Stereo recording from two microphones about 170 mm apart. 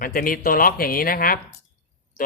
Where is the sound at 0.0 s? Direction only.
55° left (ahead or behind).